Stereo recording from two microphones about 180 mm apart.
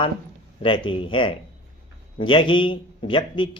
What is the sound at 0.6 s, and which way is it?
Speech, 30° left (ahead or behind).